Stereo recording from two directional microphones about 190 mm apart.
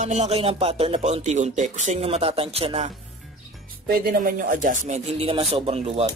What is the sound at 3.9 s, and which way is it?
Speech, 45° right (ahead or behind).